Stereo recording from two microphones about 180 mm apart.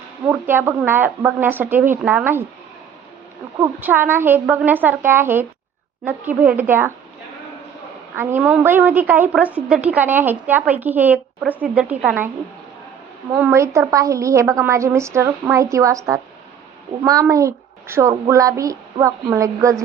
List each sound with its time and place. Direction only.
0.3 s a woman's voice: 10° right (ahead or behind)
3.6 s a woman's voice: 10° right (ahead or behind)
8.1 s a woman's voice: 10° right (ahead or behind)
13.3 s a woman's voice: 10° right (ahead or behind)